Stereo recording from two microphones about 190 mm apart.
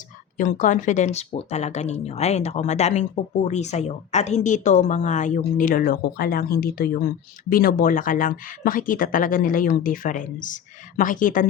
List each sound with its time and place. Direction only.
0.3 s speech: 45° left (ahead or behind)